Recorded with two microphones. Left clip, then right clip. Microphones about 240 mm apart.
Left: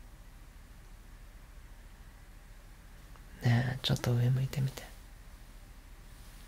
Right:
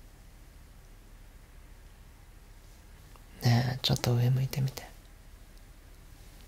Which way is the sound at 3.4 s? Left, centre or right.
Centre.